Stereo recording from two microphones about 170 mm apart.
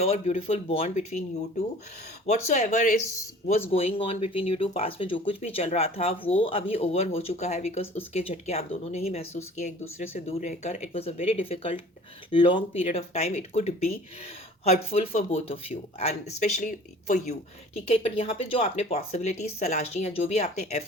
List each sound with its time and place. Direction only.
0.0 s speech: 35° left (ahead or behind)
2.2 s speech: 40° left (ahead or behind)
3.7 s speech: 35° left (ahead or behind)